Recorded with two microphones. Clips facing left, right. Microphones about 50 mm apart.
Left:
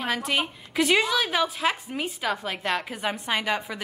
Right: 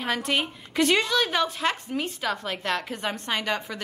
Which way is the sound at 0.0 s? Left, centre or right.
Centre.